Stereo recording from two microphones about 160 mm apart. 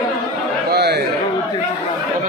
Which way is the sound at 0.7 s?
90° right.